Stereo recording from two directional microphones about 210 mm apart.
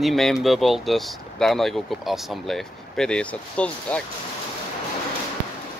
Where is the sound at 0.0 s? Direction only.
Centre (ahead or behind).